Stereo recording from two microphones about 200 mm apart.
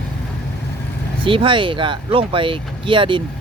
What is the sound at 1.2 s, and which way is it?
Speech, 25° right (ahead or behind).